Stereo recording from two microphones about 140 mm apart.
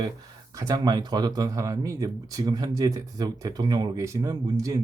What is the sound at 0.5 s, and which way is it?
Speech, 25° right (ahead or behind).